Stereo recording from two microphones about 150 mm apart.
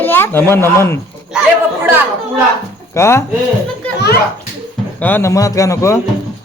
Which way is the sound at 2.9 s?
20° left (ahead or behind).